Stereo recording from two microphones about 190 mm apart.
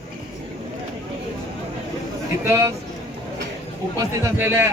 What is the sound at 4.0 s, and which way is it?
Speech, 15° right (ahead or behind).